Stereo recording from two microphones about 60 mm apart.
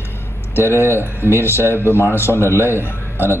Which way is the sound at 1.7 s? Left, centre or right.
Left.